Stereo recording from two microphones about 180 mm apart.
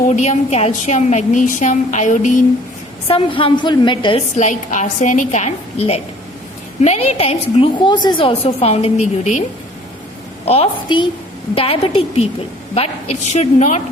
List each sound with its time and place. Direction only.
0.2 s a woman's voice: 40° left (ahead or behind)
3.1 s a woman's voice: 30° left (ahead or behind)
10.4 s a woman's voice: 35° left (ahead or behind)